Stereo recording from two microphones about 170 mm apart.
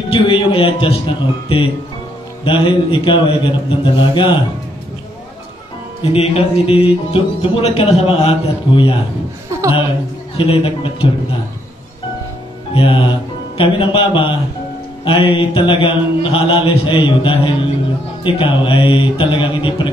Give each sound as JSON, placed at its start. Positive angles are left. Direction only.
{"t": 0.1, "sound": "music", "side_deg": 30}
{"t": 2.4, "sound": "a man's voice", "side_deg": 30}
{"t": 6.1, "sound": "music", "side_deg": 35}
{"t": 9.5, "sound": "chuckle", "side_deg": -15}
{"t": 10.3, "sound": "music", "side_deg": 35}
{"t": 12.7, "sound": "music", "side_deg": 30}